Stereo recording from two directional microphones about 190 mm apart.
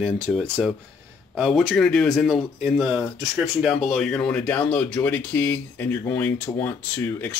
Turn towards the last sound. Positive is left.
turn(degrees=10)  # may be behind; listen again after turning